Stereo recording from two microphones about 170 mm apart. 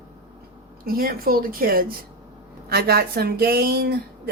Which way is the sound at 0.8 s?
60° right (ahead or behind).